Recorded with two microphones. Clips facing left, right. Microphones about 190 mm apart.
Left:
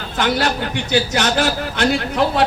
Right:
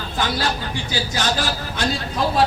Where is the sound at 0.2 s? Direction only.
70° left (ahead or behind).